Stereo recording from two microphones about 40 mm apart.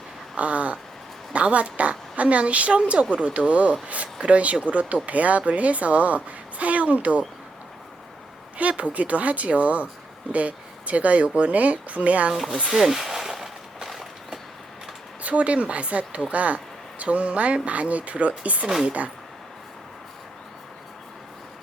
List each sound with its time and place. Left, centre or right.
0.3 s a sound: right
1.3 s speech: right
8.5 s speech: right
12.7 s walk: centre
15.2 s speech: right